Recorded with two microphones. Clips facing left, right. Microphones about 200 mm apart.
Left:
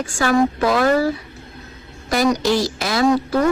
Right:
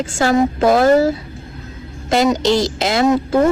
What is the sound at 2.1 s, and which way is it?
A woman's voice, 25° right (ahead or behind).